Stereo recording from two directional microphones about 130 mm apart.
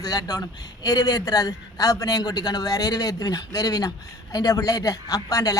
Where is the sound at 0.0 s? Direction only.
30° left (ahead or behind).